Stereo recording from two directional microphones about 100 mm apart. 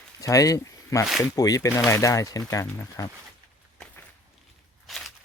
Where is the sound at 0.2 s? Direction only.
35° left (ahead or behind).